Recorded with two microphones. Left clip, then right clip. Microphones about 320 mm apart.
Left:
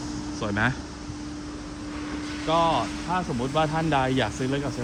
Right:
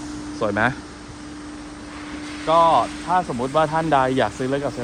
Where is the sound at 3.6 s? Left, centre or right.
Centre.